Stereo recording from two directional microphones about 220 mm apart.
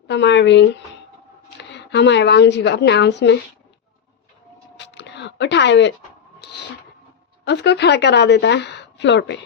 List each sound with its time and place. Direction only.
0.1 s a woman's voice: 50° left (ahead or behind)
4.8 s a sound: 50° left (ahead or behind)
7.4 s a woman's voice: 50° left (ahead or behind)